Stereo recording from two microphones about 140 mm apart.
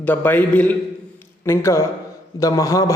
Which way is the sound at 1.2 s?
20° left (ahead or behind).